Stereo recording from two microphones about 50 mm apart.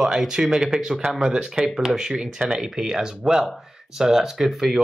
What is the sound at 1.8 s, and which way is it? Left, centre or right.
Speech, centre.